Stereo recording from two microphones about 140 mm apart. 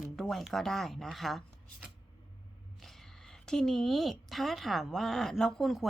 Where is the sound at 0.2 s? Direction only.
Centre (ahead or behind).